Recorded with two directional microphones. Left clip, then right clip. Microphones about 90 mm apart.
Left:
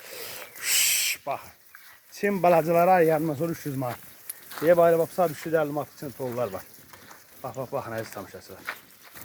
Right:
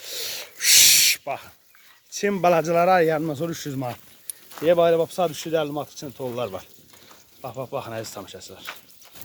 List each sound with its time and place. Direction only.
0.1 s snort: 15° right (ahead or behind)
2.1 s speech: 30° right (ahead or behind)
4.6 s speech: 15° right (ahead or behind)
6.3 s speech: 30° right (ahead or behind)
8.0 s speech: 10° right (ahead or behind)